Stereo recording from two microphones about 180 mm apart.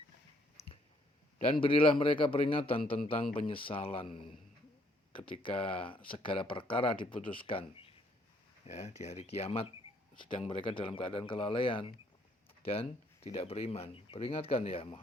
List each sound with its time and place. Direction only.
1.6 s speech: 30° left (ahead or behind)